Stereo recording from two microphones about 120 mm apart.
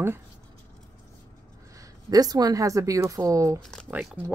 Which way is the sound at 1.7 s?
30° right (ahead or behind).